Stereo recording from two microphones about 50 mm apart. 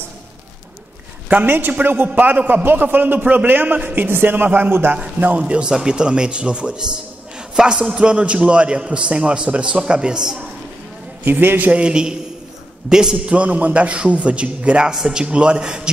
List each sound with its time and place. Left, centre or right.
1.4 s a man's voice: right
5.4 s a man's voice: centre
11.2 s a man's voice: right
11.7 s a man's voice: centre
13.3 s a man's voice: right
14.9 s a man's voice: centre